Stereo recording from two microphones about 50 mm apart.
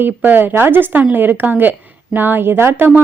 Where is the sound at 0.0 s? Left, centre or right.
Right.